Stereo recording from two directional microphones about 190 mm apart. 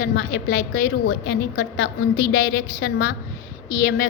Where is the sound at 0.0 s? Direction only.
50° left (ahead or behind).